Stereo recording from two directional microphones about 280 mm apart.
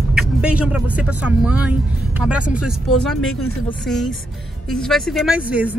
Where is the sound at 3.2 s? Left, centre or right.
Left.